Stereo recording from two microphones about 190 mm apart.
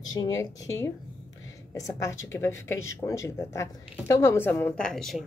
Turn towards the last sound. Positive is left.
turn(degrees=0)  # may be behind; listen again after turning